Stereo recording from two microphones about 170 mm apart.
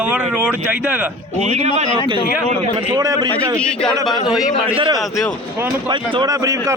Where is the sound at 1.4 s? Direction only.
40° right (ahead or behind).